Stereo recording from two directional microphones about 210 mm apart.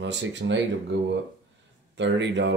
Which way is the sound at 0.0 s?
60° right (ahead or behind).